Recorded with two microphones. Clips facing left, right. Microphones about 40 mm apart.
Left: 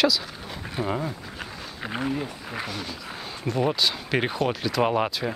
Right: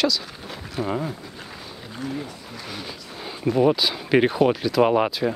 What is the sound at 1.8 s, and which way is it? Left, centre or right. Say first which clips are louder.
Speech: left 5 dB; left.